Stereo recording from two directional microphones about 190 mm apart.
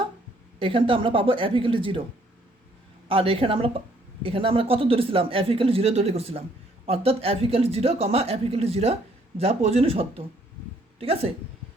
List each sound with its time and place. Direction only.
0.6 s a woman's voice: 30° right (ahead or behind)
3.1 s a woman's voice: 30° right (ahead or behind)